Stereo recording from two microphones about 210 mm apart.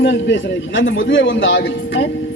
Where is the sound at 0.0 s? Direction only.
60° left (ahead or behind).